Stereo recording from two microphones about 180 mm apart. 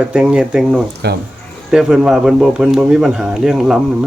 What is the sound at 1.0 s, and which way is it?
Speech, 65° right (ahead or behind).